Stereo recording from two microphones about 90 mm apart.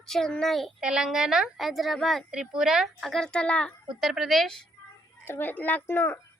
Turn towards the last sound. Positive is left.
turn(degrees=25)  # may be behind; listen again after turning